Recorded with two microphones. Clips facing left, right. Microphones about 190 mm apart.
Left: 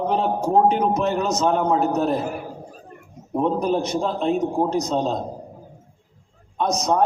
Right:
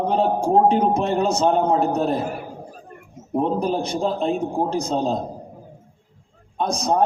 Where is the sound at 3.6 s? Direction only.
30° right (ahead or behind).